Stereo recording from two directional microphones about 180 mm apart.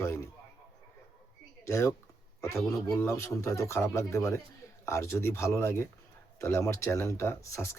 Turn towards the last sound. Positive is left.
turn(degrees=15)  # may be behind; listen again after turning